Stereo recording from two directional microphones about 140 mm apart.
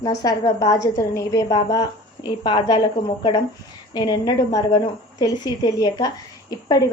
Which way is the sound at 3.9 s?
30° left (ahead or behind).